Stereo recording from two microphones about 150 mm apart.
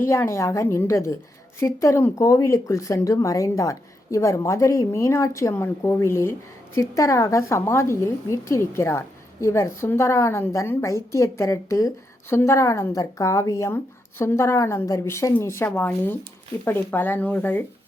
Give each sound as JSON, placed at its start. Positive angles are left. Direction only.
{"t": 0.0, "sound": "a woman's voice", "side_deg": 20}